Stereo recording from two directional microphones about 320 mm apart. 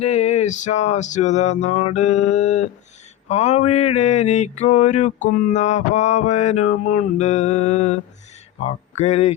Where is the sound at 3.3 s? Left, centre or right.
Left.